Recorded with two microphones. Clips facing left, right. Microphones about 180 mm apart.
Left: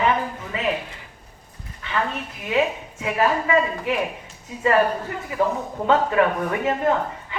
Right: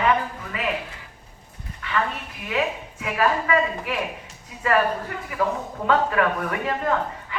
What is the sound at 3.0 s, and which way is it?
Speech, 25° left (ahead or behind).